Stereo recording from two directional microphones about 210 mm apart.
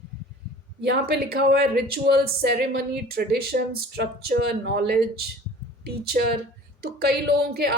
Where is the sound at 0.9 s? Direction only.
50° right (ahead or behind).